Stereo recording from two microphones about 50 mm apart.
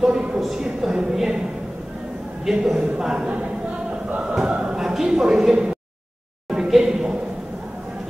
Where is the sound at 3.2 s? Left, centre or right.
Right.